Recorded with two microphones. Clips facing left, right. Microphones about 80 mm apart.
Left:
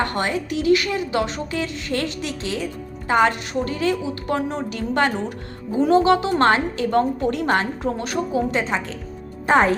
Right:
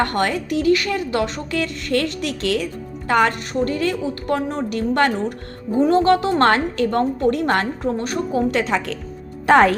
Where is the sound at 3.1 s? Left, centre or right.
Right.